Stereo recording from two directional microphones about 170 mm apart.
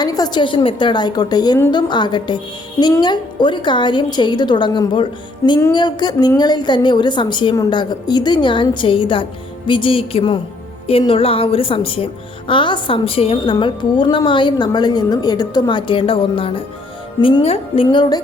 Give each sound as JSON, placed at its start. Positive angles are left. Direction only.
{"t": 0.0, "sound": "a woman's voice", "side_deg": 25}
{"t": 17.8, "sound": "a woman's voice", "side_deg": 25}